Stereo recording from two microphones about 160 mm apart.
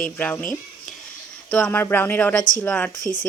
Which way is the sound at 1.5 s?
10° left (ahead or behind).